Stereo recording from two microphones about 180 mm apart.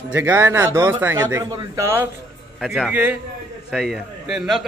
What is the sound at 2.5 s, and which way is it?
A man's voice, centre (ahead or behind).